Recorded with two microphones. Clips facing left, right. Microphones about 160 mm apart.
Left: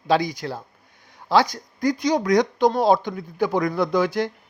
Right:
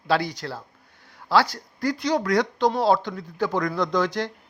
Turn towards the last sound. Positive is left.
turn(degrees=10)  # may be behind; listen again after turning